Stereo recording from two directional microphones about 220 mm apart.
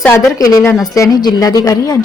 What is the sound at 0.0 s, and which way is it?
A woman's voice, 10° left (ahead or behind).